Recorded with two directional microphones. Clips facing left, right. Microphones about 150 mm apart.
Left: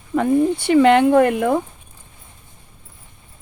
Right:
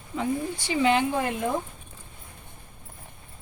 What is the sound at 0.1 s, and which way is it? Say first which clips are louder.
Speech: left 12 dB; 60° left (ahead or behind).